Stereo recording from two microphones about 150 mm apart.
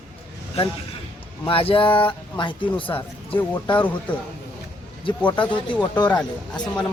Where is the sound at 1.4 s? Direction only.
35° left (ahead or behind).